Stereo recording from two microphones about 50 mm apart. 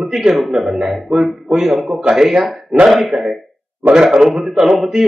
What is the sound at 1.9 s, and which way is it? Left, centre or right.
Speech, centre.